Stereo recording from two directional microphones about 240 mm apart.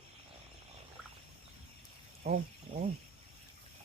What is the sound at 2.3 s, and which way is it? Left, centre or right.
Speech, right.